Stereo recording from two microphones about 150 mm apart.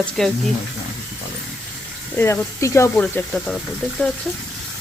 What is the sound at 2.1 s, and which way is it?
Speech, 15° left (ahead or behind).